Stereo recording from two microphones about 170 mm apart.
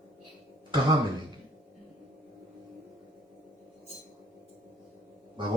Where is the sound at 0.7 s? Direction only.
25° right (ahead or behind).